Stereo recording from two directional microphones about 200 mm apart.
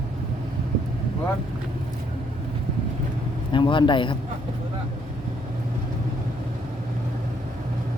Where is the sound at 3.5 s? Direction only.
25° left (ahead or behind).